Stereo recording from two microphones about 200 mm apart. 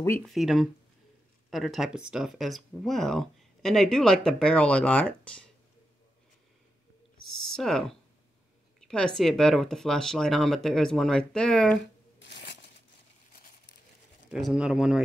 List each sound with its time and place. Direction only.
0.2 s speech: centre (ahead or behind)
7.5 s speech: centre (ahead or behind)
12.2 s a sound: 60° left (ahead or behind)
14.3 s speech: 5° right (ahead or behind)